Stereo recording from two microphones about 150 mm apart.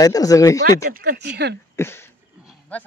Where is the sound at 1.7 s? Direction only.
15° left (ahead or behind).